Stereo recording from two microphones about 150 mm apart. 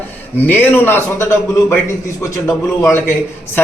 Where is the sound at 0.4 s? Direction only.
10° left (ahead or behind).